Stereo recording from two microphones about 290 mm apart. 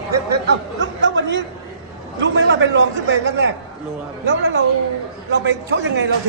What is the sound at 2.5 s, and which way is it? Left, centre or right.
A man's voice, right.